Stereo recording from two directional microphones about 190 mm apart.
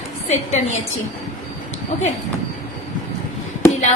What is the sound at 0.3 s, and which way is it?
Speech, 35° left (ahead or behind).